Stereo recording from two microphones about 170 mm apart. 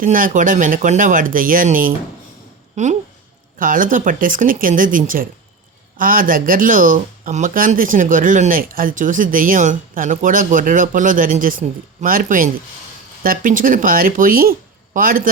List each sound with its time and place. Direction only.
0.0 s speech: 50° right (ahead or behind)
2.7 s speech: 45° right (ahead or behind)